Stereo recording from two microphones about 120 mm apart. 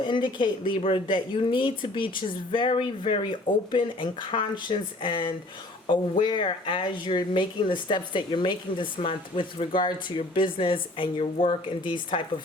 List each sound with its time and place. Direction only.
0.0 s speech: 40° left (ahead or behind)